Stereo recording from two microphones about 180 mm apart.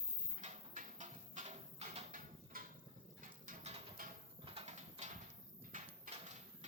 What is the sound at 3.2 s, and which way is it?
Pigeon, 45° right (ahead or behind).